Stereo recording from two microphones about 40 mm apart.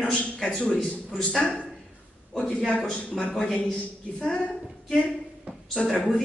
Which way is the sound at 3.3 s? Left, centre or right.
Centre.